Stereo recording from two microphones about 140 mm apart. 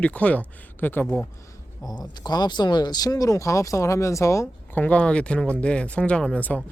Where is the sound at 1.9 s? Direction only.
30° left (ahead or behind).